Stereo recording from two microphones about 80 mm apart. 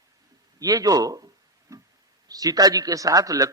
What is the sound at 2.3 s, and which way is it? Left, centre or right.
A man's voice, right.